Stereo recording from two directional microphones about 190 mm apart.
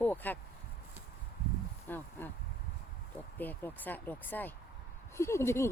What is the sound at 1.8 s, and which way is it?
Speech, 10° left (ahead or behind).